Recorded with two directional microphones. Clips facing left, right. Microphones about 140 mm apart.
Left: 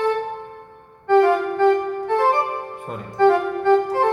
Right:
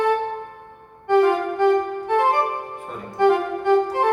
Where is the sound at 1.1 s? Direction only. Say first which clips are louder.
Left 2 dB; 15° right (ahead or behind).